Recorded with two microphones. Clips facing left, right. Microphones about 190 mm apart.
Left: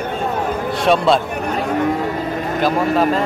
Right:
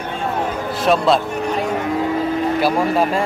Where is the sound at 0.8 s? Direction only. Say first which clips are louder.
Left 1 dB; centre (ahead or behind).